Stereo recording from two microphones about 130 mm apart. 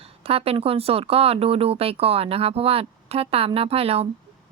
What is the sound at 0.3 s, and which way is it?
A woman's voice, 50° right (ahead or behind).